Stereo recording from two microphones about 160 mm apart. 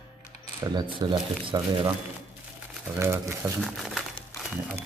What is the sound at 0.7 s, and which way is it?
Speech, 30° right (ahead or behind).